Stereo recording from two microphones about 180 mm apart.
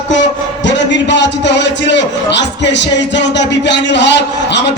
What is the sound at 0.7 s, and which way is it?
A man's voice, 80° left.